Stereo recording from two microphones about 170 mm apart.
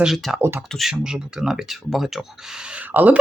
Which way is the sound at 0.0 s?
Centre (ahead or behind).